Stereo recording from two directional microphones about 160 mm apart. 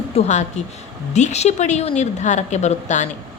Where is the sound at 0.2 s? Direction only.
45° left (ahead or behind).